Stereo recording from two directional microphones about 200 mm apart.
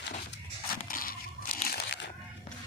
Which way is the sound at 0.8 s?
45° left (ahead or behind).